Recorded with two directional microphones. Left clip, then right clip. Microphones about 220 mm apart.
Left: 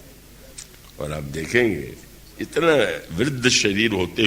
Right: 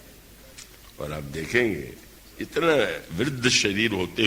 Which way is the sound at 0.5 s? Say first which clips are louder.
Left 4 dB; 45° right (ahead or behind).